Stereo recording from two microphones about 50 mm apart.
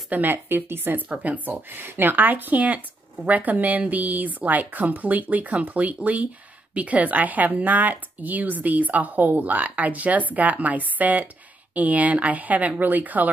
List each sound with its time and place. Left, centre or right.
0.1 s speech: right
1.0 s speech: right